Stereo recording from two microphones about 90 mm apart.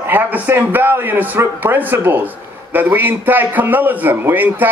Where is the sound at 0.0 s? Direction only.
20° right (ahead or behind).